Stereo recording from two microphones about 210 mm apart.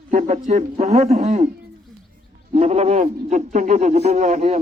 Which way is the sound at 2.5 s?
30° right (ahead or behind).